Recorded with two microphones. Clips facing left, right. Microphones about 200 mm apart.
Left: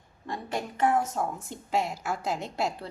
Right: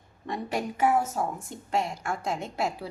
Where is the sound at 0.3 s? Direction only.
10° right (ahead or behind).